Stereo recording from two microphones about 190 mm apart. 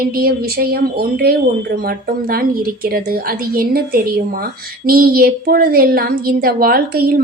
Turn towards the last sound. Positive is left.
turn(degrees=-50)  # may be behind; listen again after turning